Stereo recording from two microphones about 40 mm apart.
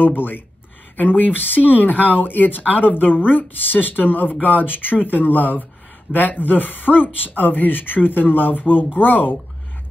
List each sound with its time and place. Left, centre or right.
0.0 s speech: left